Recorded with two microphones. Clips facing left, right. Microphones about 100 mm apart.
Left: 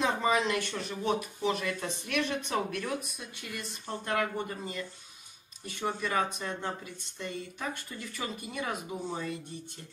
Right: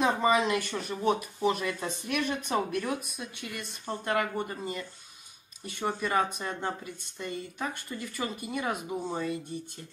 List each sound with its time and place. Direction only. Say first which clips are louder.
0.0 s speech: right 3 dB; 5° right (ahead or behind)
3.2 s speech: right 2 dB; centre (ahead or behind)